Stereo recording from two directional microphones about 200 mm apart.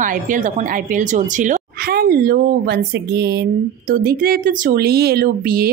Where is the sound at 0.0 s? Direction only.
40° right (ahead or behind).